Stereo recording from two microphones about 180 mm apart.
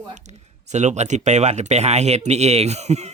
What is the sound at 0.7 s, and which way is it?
Speech, 40° right (ahead or behind).